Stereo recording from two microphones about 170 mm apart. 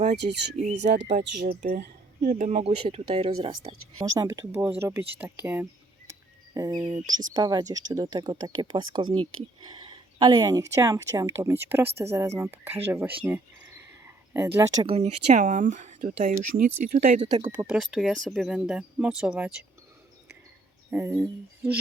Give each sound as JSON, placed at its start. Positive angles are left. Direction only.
{"t": 0.5, "sound": "speech", "side_deg": -45}
{"t": 1.2, "sound": "speech", "side_deg": -60}
{"t": 4.0, "sound": "speech", "side_deg": -20}
{"t": 6.5, "sound": "speech", "side_deg": -20}
{"t": 13.2, "sound": "a sound", "side_deg": -15}
{"t": 14.8, "sound": "speech", "side_deg": -40}
{"t": 17.7, "sound": "speech", "side_deg": -5}
{"t": 20.9, "sound": "speech", "side_deg": -15}